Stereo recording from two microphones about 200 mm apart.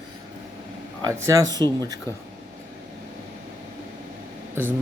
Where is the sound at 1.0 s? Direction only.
15° right (ahead or behind).